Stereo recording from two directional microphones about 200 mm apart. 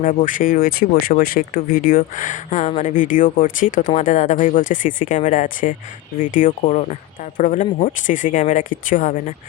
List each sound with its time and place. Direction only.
0.0 s speech: 40° left (ahead or behind)